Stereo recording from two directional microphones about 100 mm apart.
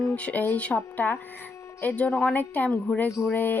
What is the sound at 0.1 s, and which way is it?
A woman's voice, 15° left (ahead or behind).